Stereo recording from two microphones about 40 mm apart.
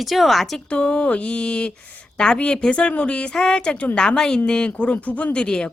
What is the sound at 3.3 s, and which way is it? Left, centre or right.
A woman's voice, centre.